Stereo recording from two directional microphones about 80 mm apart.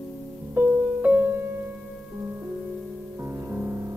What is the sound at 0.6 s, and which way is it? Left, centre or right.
Music, right.